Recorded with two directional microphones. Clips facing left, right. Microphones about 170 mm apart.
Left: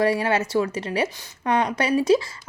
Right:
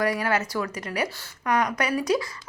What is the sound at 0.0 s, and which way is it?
A woman's voice, 25° left (ahead or behind).